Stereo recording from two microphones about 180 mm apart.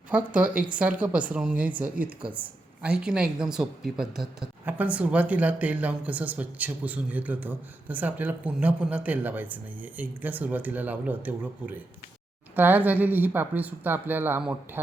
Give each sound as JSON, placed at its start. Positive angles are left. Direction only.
{"t": 0.1, "sound": "speech", "side_deg": -5}